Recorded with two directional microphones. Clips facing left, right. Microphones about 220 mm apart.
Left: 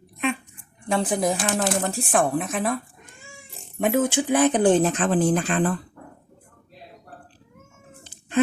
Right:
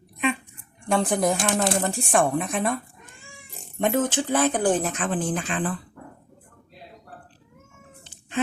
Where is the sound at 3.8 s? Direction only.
10° left (ahead or behind); by 5.7 s 40° left (ahead or behind).